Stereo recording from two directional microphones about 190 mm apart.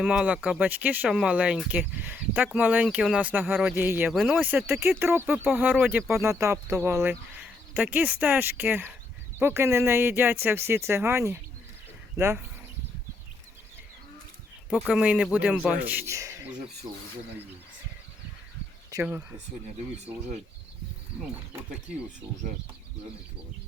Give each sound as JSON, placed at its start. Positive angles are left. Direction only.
{"t": 0.0, "sound": "speech", "side_deg": -5}
{"t": 6.1, "sound": "speech", "side_deg": -15}
{"t": 14.8, "sound": "speech", "side_deg": -5}
{"t": 18.9, "sound": "speech", "side_deg": -20}